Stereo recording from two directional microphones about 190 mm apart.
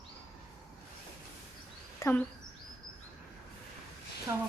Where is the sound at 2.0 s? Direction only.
10° left (ahead or behind).